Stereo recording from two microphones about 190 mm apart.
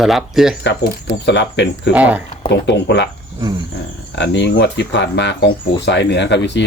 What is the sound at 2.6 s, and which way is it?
Speech, 65° left (ahead or behind).